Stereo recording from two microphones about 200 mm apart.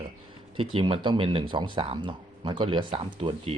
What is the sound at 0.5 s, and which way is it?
Speech, 25° right (ahead or behind).